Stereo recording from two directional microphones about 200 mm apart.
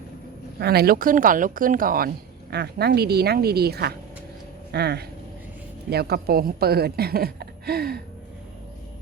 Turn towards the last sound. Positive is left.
turn(degrees=-50)  # may be behind; listen again after turning